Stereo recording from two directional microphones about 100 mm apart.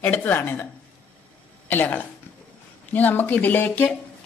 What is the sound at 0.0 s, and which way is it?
Speech, 15° left (ahead or behind).